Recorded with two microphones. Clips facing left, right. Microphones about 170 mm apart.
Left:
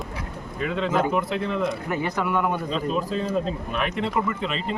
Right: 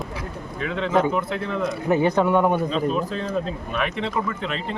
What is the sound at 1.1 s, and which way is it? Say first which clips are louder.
Speech: even; centre (ahead or behind).